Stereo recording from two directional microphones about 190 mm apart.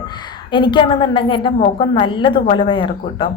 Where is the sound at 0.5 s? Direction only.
25° left (ahead or behind).